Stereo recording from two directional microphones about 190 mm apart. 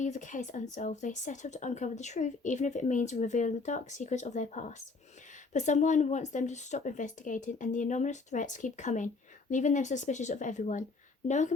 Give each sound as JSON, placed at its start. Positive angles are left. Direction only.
{"t": 0.0, "sound": "speech", "side_deg": 40}